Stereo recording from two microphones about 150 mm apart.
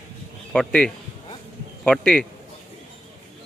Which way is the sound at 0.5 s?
5° left (ahead or behind).